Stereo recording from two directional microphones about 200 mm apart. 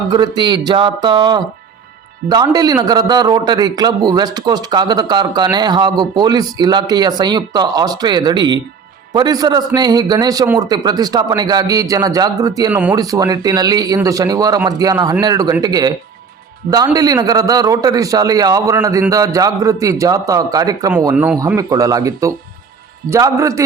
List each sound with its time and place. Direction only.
0.1 s a man's voice: 20° right (ahead or behind)